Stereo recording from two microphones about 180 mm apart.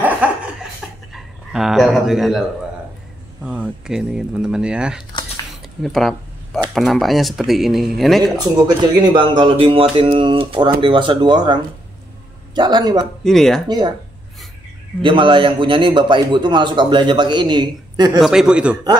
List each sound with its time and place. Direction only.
0.0 s a sound: 5° right (ahead or behind)
1.1 s speech: centre (ahead or behind)
3.4 s speech: 5° right (ahead or behind)
5.8 s a sound: centre (ahead or behind)
6.7 s speech: centre (ahead or behind)
8.2 s a man's voice: 25° right (ahead or behind)
13.2 s speech: centre (ahead or behind)
13.7 s a man's voice: 25° right (ahead or behind)
15.0 s a man's voice: 25° right (ahead or behind)
18.2 s speech: 5° right (ahead or behind)